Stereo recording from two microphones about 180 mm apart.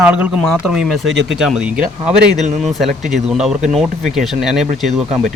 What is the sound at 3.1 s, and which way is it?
Speech, centre (ahead or behind).